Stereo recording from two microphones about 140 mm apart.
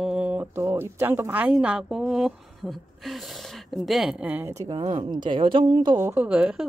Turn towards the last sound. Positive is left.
turn(degrees=-10)  # may be behind; listen again after turning